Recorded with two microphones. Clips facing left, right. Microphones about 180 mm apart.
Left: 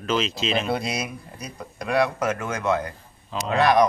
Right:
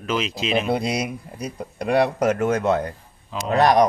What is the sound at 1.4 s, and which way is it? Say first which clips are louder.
Speech: right 7 dB; 35° right (ahead or behind).